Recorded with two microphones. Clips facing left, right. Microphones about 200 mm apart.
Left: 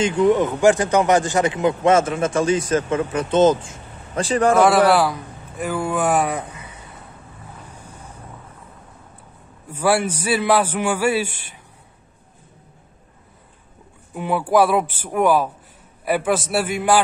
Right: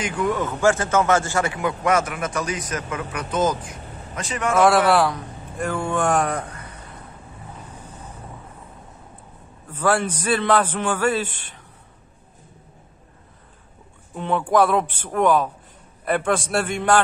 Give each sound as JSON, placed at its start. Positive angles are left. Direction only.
{"t": 0.0, "sound": "speech", "side_deg": 25}
{"t": 4.6, "sound": "a man's voice", "side_deg": 0}
{"t": 7.7, "sound": "wind noise", "side_deg": 10}
{"t": 9.7, "sound": "a man's voice", "side_deg": 10}
{"t": 14.1, "sound": "a man's voice", "side_deg": 10}